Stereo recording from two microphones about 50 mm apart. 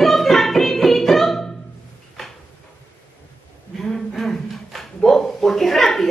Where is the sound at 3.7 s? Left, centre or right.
Centre.